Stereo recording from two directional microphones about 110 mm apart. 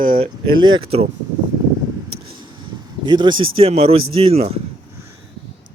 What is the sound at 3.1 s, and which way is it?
Speech, 45° right (ahead or behind).